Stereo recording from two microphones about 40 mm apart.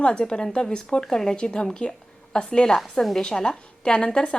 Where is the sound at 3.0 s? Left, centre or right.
Centre; by 4.2 s left.